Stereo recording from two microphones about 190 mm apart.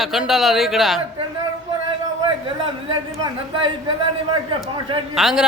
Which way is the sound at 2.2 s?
25° right (ahead or behind).